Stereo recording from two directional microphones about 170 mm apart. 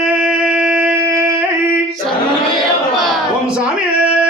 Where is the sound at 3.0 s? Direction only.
5° right (ahead or behind).